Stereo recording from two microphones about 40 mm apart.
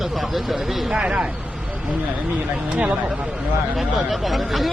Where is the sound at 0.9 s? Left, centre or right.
Right.